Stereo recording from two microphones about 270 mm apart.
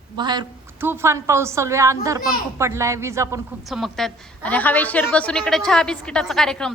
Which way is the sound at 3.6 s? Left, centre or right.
Centre.